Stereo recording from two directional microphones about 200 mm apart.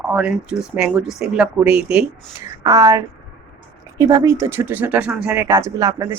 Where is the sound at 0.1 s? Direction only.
5° right (ahead or behind).